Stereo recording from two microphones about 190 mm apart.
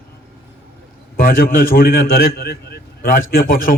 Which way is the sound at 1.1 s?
50° left (ahead or behind).